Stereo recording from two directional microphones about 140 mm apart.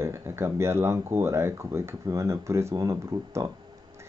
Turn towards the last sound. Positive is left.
turn(degrees=-20)  # may be behind; listen again after turning